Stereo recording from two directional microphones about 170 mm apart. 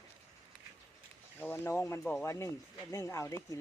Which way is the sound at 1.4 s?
15° left (ahead or behind).